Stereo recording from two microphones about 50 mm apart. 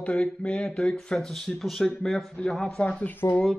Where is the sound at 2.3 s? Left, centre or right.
Centre.